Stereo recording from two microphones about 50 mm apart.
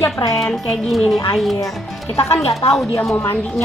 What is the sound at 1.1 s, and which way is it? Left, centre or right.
Music, centre.